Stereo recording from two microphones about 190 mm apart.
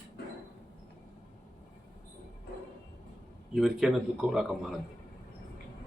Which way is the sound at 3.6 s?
Centre (ahead or behind).